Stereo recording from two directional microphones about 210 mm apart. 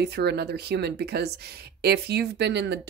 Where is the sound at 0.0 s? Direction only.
50° right (ahead or behind).